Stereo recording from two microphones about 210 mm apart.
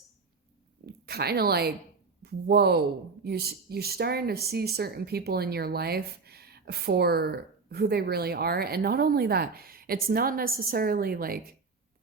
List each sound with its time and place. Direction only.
0.9 s speech: 50° right (ahead or behind)